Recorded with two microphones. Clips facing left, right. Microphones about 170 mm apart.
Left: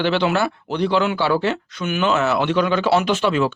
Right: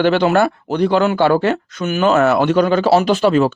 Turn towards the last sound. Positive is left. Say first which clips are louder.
# right 5 dB
turn(degrees=-40)  # may be behind; listen again after turning